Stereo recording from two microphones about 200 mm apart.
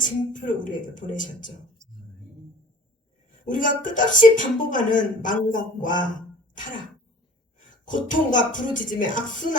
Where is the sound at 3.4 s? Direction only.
40° left (ahead or behind).